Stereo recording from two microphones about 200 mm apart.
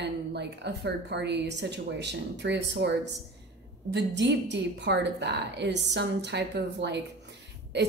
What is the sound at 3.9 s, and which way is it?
Speech, 60° right (ahead or behind).